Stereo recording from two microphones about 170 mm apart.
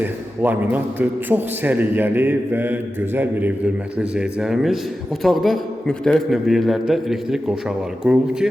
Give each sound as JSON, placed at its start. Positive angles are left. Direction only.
{"t": 0.0, "sound": "a man's voice", "side_deg": -10}